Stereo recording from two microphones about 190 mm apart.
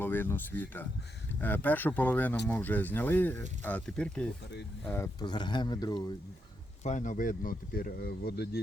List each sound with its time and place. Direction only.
0.0 s speech: 10° left (ahead or behind)
5.2 s speech: 25° left (ahead or behind)
6.8 s speech: 40° left (ahead or behind); by 8.6 s 55° left (ahead or behind)